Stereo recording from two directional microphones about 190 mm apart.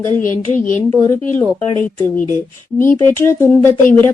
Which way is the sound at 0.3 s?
10° left (ahead or behind).